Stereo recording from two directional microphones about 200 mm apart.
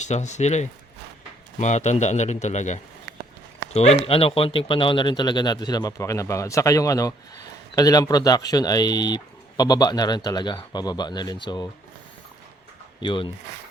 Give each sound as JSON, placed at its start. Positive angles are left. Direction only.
{"t": 0.0, "sound": "speech", "side_deg": 35}
{"t": 13.0, "sound": "speech", "side_deg": 25}